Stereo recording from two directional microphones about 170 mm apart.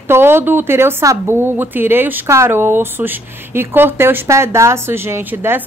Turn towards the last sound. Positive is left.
turn(degrees=-10)  # may be behind; listen again after turning